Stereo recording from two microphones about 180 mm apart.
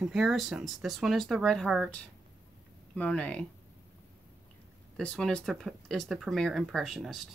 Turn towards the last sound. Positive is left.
turn(degrees=0)  # may be behind; listen again after turning